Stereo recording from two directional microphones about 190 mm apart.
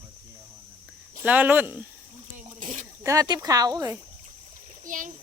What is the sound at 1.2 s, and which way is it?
Speech, 10° right (ahead or behind).